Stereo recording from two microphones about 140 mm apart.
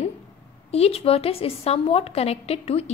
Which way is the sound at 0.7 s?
45° left (ahead or behind).